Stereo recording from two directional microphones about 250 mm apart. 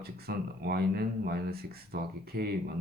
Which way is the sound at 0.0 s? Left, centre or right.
Right.